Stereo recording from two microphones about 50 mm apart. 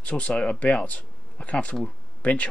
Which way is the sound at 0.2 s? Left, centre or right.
Left.